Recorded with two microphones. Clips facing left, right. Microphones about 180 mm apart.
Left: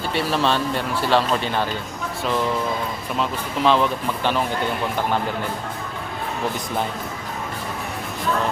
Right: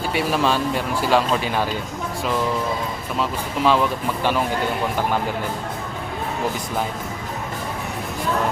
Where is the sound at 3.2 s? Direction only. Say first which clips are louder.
Even; 5° right (ahead or behind).